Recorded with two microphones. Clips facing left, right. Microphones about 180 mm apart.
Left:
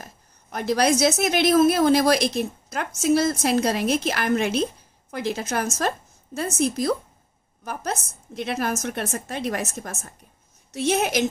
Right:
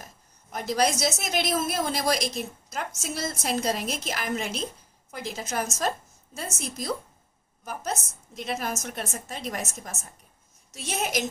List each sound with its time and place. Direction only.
0.0 s a woman's voice: 65° left (ahead or behind)